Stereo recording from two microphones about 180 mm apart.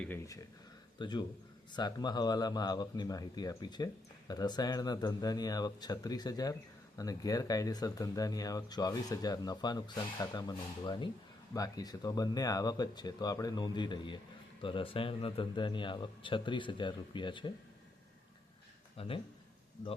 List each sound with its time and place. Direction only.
0.0 s speech: 15° left (ahead or behind)
0.9 s a man's voice: 25° left (ahead or behind)
18.9 s speech: 30° left (ahead or behind)